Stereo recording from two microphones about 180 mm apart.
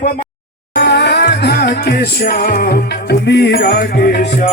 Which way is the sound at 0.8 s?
70° left (ahead or behind).